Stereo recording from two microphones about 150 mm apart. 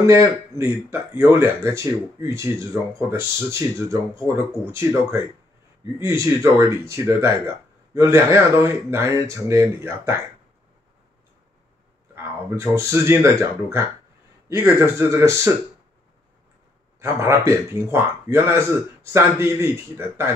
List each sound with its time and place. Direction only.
0.0 s speech: 20° right (ahead or behind)
12.5 s speech: 20° right (ahead or behind)
17.0 s speech: 20° right (ahead or behind)